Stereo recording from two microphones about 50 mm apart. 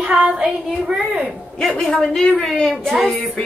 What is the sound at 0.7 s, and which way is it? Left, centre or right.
Speech, centre.